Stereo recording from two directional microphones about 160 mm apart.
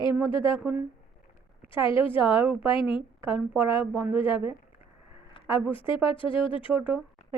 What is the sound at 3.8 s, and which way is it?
Speech, 5° right (ahead or behind).